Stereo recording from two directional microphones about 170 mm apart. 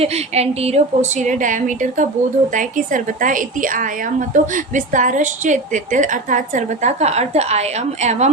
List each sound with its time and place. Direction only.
0.0 s a woman's voice: 40° right (ahead or behind)